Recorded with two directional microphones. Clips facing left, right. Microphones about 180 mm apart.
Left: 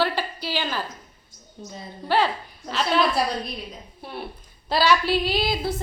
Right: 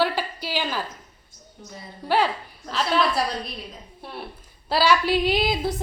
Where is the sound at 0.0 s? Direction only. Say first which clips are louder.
Right 1 dB; 10° right (ahead or behind).